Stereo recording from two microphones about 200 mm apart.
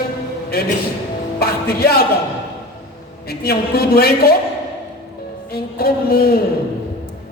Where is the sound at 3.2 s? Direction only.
50° left (ahead or behind).